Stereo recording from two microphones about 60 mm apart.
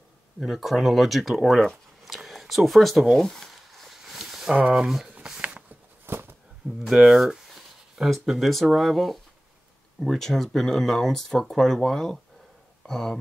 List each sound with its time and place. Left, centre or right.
0.4 s speech: centre
2.0 s zipper: centre
4.6 s speech: centre
4.8 s speech: centre
5.1 s a sound: right
6.0 s a sound: right
6.8 s speech: centre